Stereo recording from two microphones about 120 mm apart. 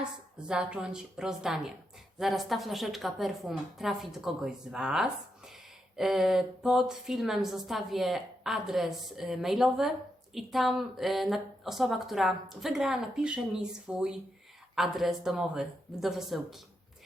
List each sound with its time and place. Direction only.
0.0 s a woman's voice: 5° right (ahead or behind)